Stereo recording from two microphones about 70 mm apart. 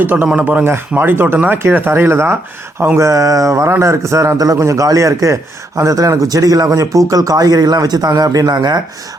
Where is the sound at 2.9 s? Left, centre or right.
Right.